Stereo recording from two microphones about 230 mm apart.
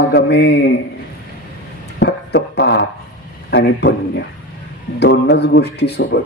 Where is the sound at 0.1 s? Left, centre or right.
Left.